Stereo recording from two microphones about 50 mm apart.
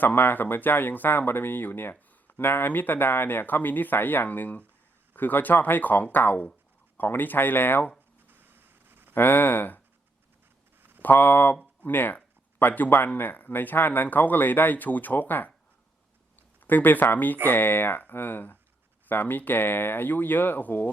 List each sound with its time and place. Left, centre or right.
0.0 s speech: left
8.3 s a sound: right
9.1 s speech: left
11.0 s speech: left
16.6 s speech: left